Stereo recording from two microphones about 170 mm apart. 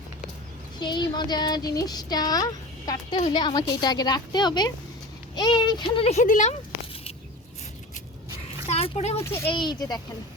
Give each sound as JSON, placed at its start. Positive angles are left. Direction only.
{"t": 0.8, "sound": "a child's voice", "side_deg": 25}
{"t": 8.6, "sound": "a child's voice", "side_deg": 35}
{"t": 9.2, "sound": "speech", "side_deg": 15}
{"t": 9.5, "sound": "speech", "side_deg": 25}